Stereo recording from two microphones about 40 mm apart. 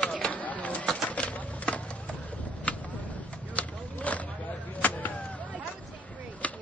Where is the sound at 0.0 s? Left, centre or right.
Left.